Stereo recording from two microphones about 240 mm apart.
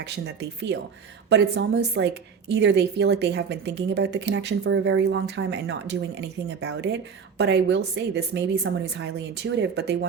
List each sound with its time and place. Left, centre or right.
0.0 s a woman's voice: right